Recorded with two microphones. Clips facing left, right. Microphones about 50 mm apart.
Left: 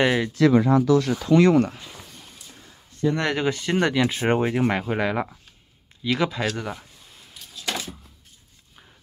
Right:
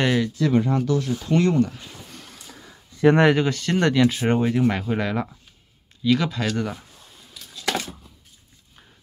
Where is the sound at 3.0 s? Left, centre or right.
Right.